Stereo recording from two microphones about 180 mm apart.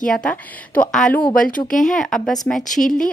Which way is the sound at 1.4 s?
50° left (ahead or behind).